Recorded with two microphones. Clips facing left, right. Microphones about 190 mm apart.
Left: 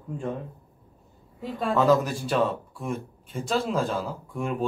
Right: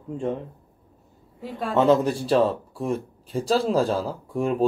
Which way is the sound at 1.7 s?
25° right (ahead or behind).